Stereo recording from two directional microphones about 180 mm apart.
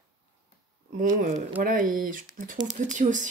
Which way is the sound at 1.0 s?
45° right (ahead or behind).